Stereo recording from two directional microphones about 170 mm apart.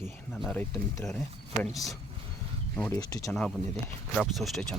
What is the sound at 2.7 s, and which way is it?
Speech, 10° left (ahead or behind).